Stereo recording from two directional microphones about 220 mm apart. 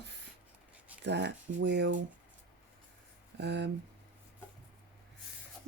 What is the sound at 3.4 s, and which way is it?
Speech, 50° right (ahead or behind).